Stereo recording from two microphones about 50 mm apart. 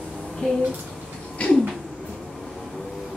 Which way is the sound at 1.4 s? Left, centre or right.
Left.